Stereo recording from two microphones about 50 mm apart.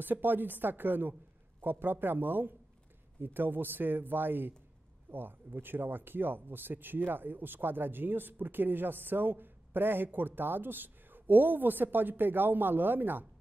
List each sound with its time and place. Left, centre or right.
0.0 s speech: right